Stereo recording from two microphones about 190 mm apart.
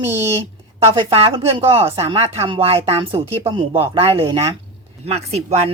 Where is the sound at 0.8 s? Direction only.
30° right (ahead or behind).